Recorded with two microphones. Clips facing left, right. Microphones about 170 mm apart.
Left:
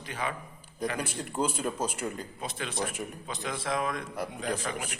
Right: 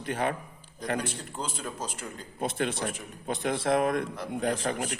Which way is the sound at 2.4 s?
55° right (ahead or behind).